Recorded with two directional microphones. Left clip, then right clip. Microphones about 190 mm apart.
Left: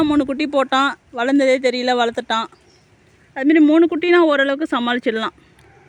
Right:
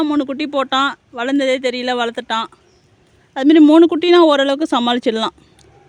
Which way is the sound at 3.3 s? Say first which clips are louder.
Right 4 dB; 25° right (ahead or behind).